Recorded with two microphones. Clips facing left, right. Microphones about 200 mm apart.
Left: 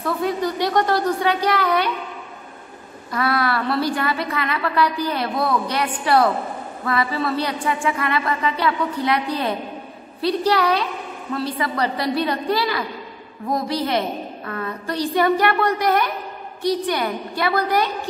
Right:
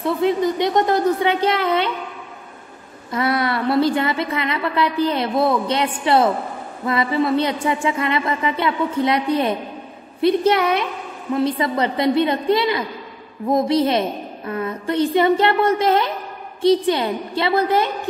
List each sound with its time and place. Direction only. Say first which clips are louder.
0.0 s a woman's voice: right 4 dB; 20° right (ahead or behind)
3.1 s a woman's voice: right 1 dB; 20° right (ahead or behind)